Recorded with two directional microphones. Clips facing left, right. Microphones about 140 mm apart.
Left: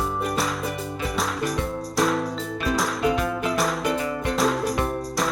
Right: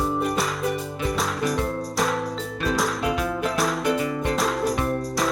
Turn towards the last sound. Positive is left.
turn(degrees=0)  # may be behind; listen again after turning